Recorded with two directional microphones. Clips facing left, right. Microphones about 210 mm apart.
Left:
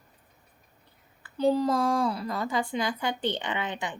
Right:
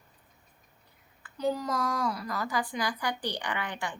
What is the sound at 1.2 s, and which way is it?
Speech, 30° left (ahead or behind).